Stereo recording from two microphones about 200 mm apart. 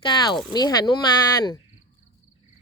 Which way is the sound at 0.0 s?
20° left (ahead or behind).